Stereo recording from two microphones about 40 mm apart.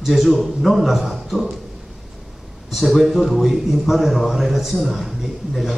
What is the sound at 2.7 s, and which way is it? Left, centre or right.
A man's voice, centre.